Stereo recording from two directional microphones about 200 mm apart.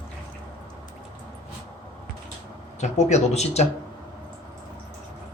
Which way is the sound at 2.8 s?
35° left (ahead or behind).